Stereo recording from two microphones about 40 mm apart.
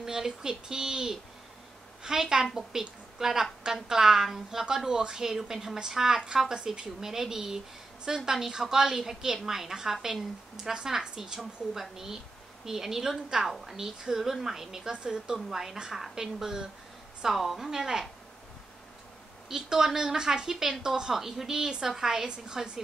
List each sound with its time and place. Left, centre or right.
0.0 s a woman's voice: centre
19.5 s a woman's voice: centre